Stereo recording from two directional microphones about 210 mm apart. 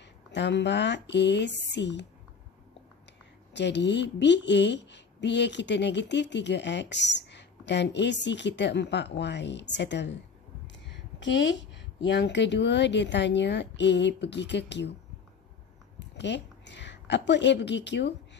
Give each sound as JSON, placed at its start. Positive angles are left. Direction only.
{"t": 0.0, "sound": "a woman's voice", "side_deg": 55}
{"t": 3.5, "sound": "a woman's voice", "side_deg": 55}
{"t": 16.0, "sound": "a sound", "side_deg": 55}